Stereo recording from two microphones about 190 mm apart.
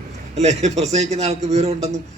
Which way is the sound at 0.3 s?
35° right (ahead or behind).